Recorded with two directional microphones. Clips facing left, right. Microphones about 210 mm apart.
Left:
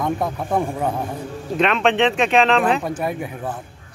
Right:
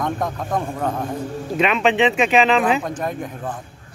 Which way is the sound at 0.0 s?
10° left (ahead or behind).